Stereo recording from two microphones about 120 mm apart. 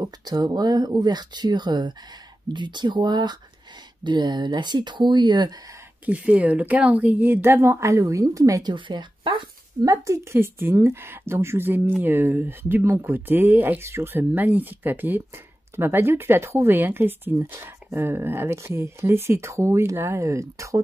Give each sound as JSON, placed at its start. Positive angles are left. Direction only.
{"t": 0.0, "sound": "speech", "side_deg": -35}
{"t": 6.0, "sound": "speech", "side_deg": -10}
{"t": 8.7, "sound": "speech", "side_deg": -40}
{"t": 9.8, "sound": "speech", "side_deg": -25}